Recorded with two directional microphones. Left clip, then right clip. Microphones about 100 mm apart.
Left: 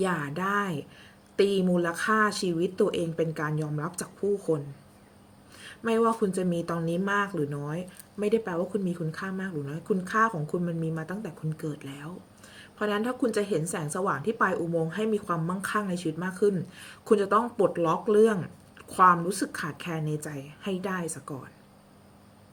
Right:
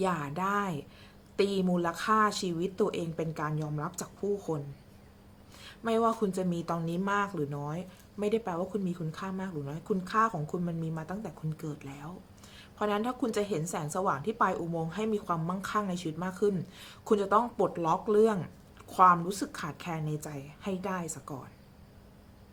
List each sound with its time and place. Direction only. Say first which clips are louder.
0.0 s a woman's voice: left 2 dB; 20° right (ahead or behind)
5.6 s a woman's voice: left 3 dB; 20° right (ahead or behind)
12.5 s a woman's voice: left 2 dB; 20° right (ahead or behind)